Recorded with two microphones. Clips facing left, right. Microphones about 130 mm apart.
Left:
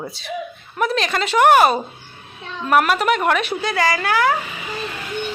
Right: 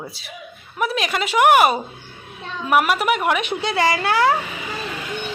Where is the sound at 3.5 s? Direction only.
25° right (ahead or behind).